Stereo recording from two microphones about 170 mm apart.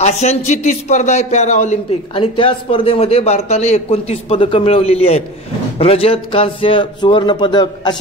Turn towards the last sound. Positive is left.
turn(degrees=25)  # may be behind; listen again after turning